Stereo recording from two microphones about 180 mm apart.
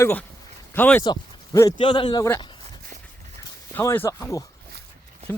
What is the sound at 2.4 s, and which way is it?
Walk, 25° left (ahead or behind).